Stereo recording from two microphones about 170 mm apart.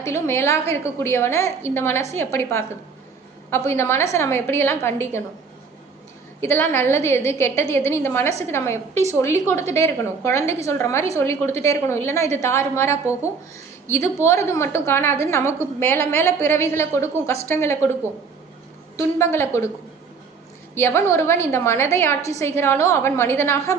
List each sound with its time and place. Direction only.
0.0 s a woman's voice: 15° left (ahead or behind)
6.4 s a woman's voice: 15° left (ahead or behind)
18.9 s a woman's voice: 15° left (ahead or behind)
20.7 s a woman's voice: 15° left (ahead or behind)